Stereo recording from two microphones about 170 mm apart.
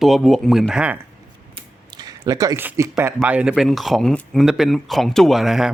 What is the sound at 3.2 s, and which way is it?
Speech, 5° right (ahead or behind).